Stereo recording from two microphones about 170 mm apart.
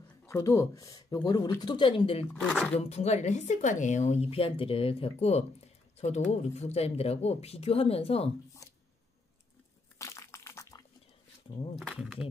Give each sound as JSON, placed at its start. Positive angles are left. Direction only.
{"t": 0.3, "sound": "speech", "side_deg": 15}
{"t": 2.3, "sound": "speech", "side_deg": 0}
{"t": 2.7, "sound": "speech", "side_deg": 35}
{"t": 9.9, "sound": "crushing", "side_deg": 15}
{"t": 11.7, "sound": "speech", "side_deg": 0}